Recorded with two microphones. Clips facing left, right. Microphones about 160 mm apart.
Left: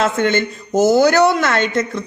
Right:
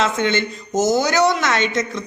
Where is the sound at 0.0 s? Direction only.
50° left (ahead or behind).